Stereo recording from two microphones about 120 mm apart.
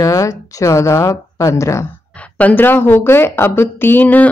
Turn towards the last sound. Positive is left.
turn(degrees=15)  # may be behind; listen again after turning